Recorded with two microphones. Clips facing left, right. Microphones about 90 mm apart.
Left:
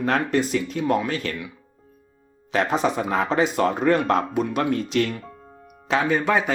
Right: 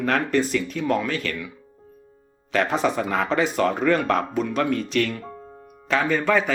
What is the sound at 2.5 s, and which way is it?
Speech, 20° left (ahead or behind).